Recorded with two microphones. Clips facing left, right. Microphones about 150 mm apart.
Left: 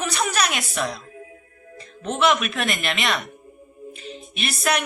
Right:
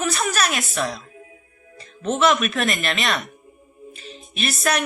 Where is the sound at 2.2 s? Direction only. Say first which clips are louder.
Right 1 dB; 15° left (ahead or behind).